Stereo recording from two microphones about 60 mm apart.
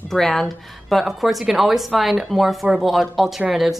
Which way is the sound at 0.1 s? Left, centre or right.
Centre.